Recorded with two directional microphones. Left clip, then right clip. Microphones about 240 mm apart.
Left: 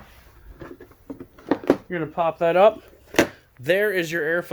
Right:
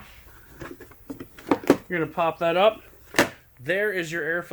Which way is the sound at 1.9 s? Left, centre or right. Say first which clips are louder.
Left 1 dB; left.